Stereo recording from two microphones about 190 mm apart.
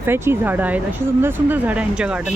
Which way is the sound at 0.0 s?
10° right (ahead or behind).